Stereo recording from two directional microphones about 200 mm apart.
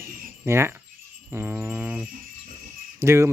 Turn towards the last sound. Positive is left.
turn(degrees=-15)  # may be behind; listen again after turning